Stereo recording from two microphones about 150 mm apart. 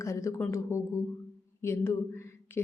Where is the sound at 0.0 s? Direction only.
20° left (ahead or behind).